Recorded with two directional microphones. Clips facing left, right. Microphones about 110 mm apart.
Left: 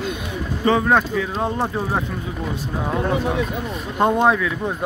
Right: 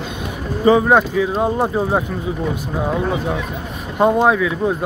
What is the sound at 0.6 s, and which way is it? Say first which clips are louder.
Speech: right 5 dB; 15° right (ahead or behind).